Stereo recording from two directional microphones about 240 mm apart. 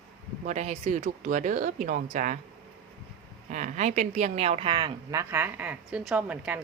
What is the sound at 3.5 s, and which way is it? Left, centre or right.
A woman's voice, right.